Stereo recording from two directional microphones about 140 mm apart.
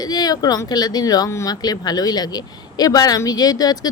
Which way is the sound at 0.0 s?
30° left (ahead or behind).